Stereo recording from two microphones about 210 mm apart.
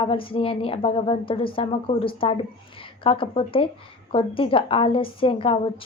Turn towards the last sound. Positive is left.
turn(degrees=25)  # may be behind; listen again after turning